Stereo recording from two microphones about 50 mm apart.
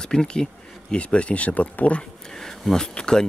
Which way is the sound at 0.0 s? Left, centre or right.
Centre.